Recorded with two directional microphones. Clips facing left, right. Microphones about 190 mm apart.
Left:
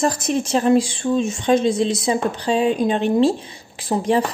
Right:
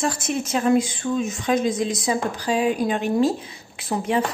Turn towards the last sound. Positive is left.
turn(degrees=35)  # may be behind; listen again after turning